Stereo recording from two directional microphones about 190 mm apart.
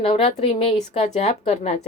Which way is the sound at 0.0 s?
30° left (ahead or behind).